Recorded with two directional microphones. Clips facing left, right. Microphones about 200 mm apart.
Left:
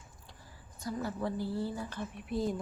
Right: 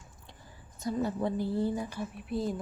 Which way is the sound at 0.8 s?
20° right (ahead or behind).